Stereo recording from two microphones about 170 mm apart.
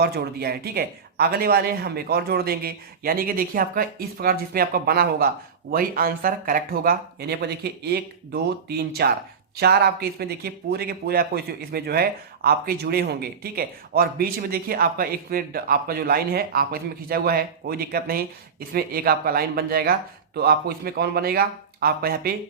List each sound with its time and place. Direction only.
0.0 s a man's voice: 70° right (ahead or behind)